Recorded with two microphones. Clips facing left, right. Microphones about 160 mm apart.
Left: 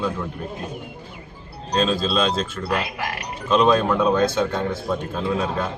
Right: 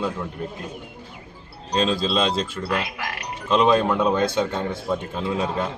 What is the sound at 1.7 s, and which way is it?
Speech, 20° right (ahead or behind).